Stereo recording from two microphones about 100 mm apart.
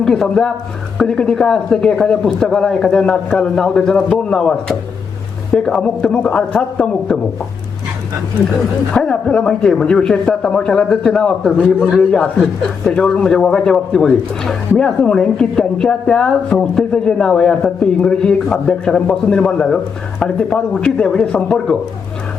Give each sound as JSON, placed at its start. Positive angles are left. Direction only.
{"t": 0.0, "sound": "a woman's voice", "side_deg": 5}
{"t": 5.5, "sound": "a woman's voice", "side_deg": 5}
{"t": 8.9, "sound": "a woman's voice", "side_deg": 5}